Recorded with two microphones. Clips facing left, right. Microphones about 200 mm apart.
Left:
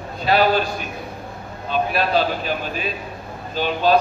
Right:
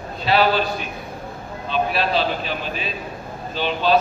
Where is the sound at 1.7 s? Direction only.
45° left (ahead or behind).